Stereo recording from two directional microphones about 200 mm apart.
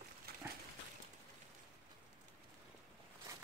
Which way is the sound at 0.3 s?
50° right (ahead or behind).